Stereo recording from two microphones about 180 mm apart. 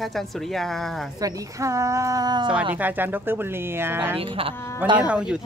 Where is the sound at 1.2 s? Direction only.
20° right (ahead or behind).